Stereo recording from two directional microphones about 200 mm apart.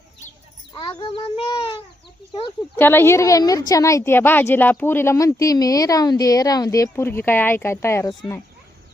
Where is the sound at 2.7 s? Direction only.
10° left (ahead or behind).